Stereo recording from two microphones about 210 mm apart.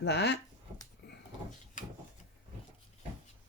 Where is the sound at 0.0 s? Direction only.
55° left (ahead or behind).